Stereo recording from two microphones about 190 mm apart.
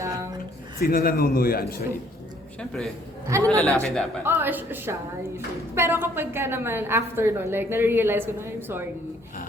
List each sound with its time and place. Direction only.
0.0 s a sound: 15° right (ahead or behind)
0.8 s a man's voice: 50° left (ahead or behind)
2.6 s a man's voice: 5° left (ahead or behind)
3.2 s a woman's voice: 15° right (ahead or behind)
3.8 s a man's voice: 5° left (ahead or behind)
4.2 s a woman's voice: 10° right (ahead or behind)